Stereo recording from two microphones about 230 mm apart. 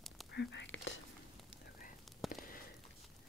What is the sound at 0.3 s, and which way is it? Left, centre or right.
Whispering, left.